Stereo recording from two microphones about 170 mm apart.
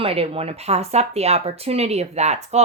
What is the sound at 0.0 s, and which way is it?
Speech, 35° right (ahead or behind).